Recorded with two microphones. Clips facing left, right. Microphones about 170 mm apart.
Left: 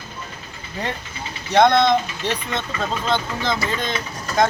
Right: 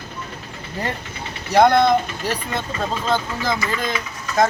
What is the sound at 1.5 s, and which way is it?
Speech, 5° right (ahead or behind).